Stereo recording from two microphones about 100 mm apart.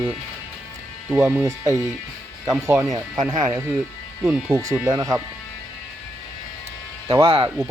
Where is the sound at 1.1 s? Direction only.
20° right (ahead or behind).